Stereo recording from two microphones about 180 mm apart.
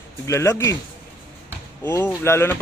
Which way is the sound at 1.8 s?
15° left (ahead or behind).